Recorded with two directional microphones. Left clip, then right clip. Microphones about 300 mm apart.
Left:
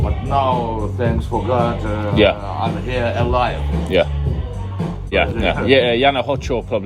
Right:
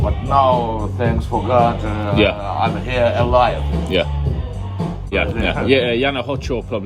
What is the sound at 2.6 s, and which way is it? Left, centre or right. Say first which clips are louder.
Speech: right 4 dB; right.